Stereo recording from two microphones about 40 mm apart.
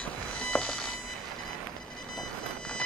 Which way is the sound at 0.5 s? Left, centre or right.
Left.